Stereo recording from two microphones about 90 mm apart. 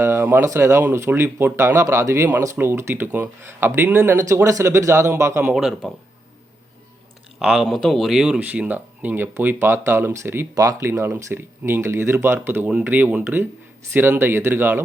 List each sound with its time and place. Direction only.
0.0 s speech: 25° right (ahead or behind)
5.5 s speech: 5° right (ahead or behind)
7.3 s speech: centre (ahead or behind); by 10.4 s 25° right (ahead or behind)
10.5 s speech: 40° right (ahead or behind)
10.8 s speech: 25° right (ahead or behind)